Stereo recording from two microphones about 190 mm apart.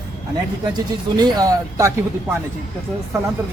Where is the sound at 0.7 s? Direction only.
20° right (ahead or behind).